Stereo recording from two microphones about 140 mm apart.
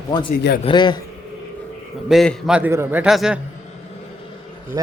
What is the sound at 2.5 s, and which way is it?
Speech, 15° right (ahead or behind).